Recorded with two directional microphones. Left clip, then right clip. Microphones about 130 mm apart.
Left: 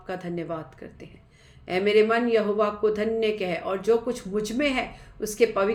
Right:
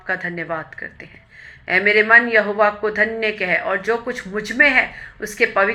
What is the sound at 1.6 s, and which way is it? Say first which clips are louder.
A man's voice: right 6 dB; 35° left (ahead or behind).